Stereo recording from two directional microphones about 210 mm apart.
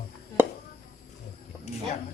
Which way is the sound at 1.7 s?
30° left (ahead or behind).